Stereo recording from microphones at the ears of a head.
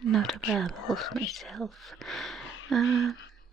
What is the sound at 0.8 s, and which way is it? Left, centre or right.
Speech, left.